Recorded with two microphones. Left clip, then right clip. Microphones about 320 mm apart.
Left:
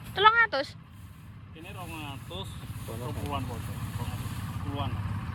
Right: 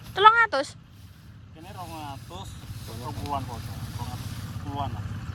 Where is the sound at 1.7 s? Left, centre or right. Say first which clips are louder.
Right 3 dB; centre.